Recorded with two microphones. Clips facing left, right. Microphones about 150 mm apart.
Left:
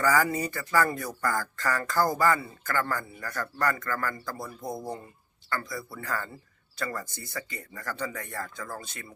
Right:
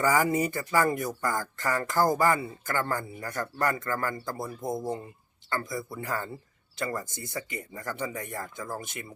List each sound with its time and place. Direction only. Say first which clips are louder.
0.0 s speech: right 1 dB; 20° right (ahead or behind)